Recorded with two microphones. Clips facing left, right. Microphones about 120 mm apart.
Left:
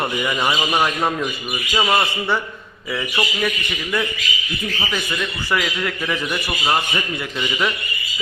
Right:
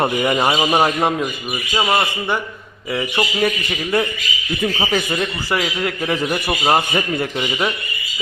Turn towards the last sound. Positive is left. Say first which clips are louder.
# right 1 dB
turn(degrees=-25)  # may be behind; listen again after turning